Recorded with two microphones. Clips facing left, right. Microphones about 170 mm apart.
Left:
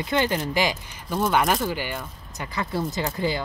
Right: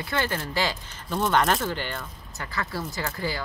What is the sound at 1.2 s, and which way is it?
Speech, 5° left (ahead or behind).